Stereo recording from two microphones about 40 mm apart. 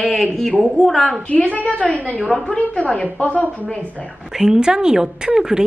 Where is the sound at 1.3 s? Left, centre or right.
Left.